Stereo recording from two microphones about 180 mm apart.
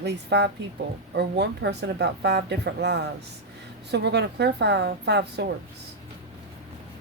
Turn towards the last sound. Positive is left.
turn(degrees=-70)  # may be behind; listen again after turning